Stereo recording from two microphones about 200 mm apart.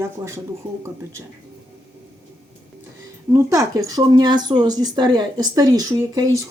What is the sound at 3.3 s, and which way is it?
Speech, 15° right (ahead or behind).